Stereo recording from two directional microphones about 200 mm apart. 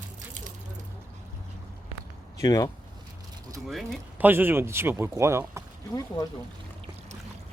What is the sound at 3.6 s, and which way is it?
Speech, 5° right (ahead or behind).